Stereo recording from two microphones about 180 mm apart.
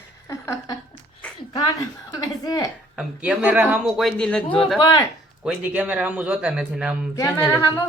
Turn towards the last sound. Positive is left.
turn(degrees=10)  # may be behind; listen again after turning